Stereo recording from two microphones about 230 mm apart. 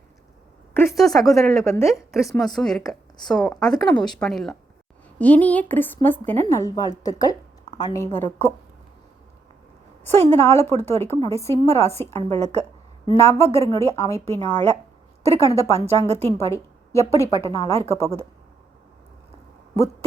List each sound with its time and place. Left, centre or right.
0.7 s a woman's voice: centre
2.1 s a woman's voice: centre
3.9 s speech: centre
4.2 s a woman's voice: centre
10.3 s a woman's voice: centre
12.4 s a woman's voice: right
13.1 s a woman's voice: centre
16.0 s a woman's voice: right
16.4 s a woman's voice: centre